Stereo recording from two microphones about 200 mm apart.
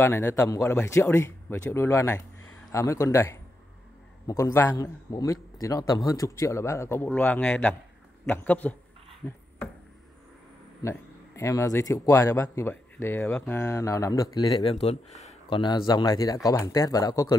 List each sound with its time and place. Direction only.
0.0 s speech: 10° left (ahead or behind)
10.8 s speech: 15° left (ahead or behind)
14.6 s speech: 30° left (ahead or behind)